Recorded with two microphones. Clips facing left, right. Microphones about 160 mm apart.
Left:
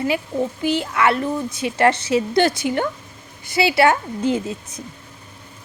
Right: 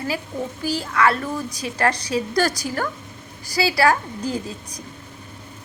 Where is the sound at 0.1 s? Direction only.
25° left (ahead or behind).